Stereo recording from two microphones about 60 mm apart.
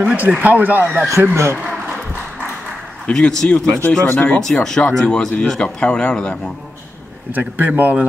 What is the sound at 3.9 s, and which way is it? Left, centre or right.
Speech, left.